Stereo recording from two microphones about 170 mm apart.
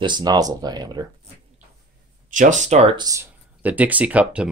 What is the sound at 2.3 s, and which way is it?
Speech, 50° right (ahead or behind).